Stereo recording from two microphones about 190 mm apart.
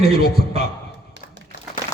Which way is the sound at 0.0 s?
55° left (ahead or behind).